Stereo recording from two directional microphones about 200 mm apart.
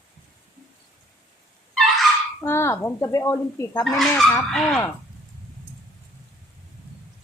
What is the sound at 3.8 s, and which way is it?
Speech, centre (ahead or behind).